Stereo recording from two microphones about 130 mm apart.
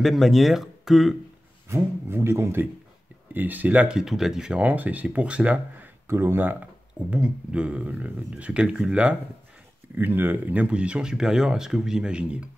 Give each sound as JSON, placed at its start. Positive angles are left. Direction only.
{"t": 0.0, "sound": "speech", "side_deg": 0}
{"t": 1.7, "sound": "speech", "side_deg": -20}